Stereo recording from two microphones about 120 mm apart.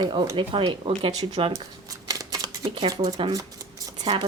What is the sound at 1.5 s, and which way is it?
Shuffling cards, 30° right (ahead or behind).